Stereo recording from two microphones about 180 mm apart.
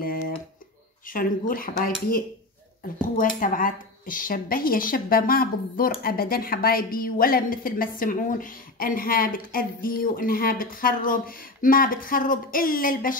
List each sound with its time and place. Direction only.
1.0 s speech: 50° left (ahead or behind)